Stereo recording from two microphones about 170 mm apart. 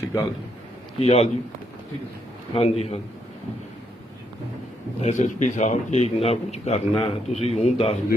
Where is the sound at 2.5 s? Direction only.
35° left (ahead or behind).